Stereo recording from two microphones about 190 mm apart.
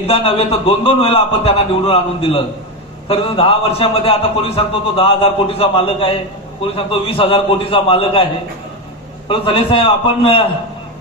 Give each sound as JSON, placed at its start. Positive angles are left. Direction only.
{"t": 0.0, "sound": "a man's voice", "side_deg": 30}
{"t": 9.3, "sound": "a man's voice", "side_deg": 30}